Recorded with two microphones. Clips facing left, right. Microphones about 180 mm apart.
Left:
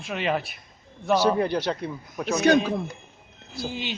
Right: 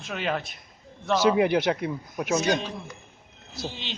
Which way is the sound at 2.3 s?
60° left (ahead or behind).